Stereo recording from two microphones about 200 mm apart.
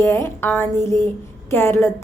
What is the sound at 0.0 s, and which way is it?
A woman's voice, 15° left (ahead or behind).